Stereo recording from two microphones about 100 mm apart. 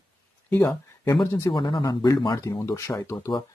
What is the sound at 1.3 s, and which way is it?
Speech, 45° left (ahead or behind).